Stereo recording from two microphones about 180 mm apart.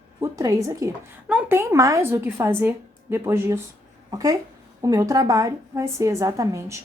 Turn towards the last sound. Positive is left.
turn(degrees=-20)  # may be behind; listen again after turning